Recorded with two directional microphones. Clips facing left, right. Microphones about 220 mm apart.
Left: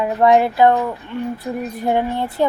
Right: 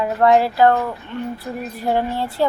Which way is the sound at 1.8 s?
20° left (ahead or behind).